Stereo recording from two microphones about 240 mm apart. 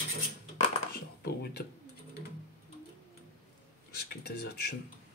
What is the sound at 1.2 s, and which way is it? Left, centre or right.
Speech, left.